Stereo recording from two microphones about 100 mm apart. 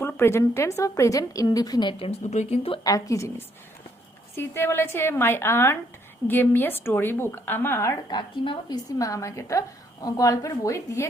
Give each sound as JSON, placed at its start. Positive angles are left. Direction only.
{"t": 0.2, "sound": "a woman's voice", "side_deg": 25}
{"t": 2.0, "sound": "speech", "side_deg": 80}
{"t": 2.8, "sound": "a woman's voice", "side_deg": 35}
{"t": 8.1, "sound": "a woman's voice", "side_deg": 40}